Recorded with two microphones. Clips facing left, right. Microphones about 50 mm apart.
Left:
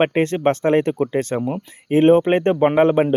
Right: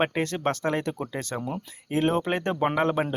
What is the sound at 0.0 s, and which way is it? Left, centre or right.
Speech, left.